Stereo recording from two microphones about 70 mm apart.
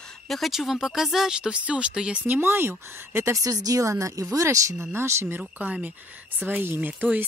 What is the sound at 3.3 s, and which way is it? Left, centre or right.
Speech, right.